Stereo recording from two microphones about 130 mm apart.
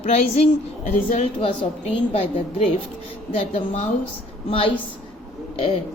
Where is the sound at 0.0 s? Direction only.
50° left (ahead or behind).